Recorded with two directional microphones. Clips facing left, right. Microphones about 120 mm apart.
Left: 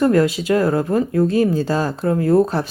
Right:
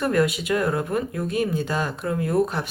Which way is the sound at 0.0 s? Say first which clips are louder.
Left 6 dB; 25° left (ahead or behind).